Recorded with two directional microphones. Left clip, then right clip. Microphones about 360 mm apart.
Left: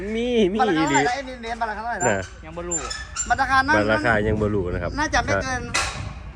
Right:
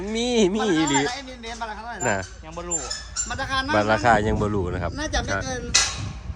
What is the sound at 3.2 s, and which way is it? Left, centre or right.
Speech, centre.